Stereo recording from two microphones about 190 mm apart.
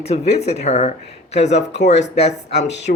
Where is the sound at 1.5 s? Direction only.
65° left (ahead or behind).